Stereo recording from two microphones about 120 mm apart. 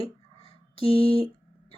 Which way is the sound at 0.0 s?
50° left (ahead or behind).